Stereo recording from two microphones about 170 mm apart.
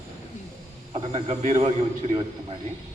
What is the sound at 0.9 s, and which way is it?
A man's voice, 35° right (ahead or behind).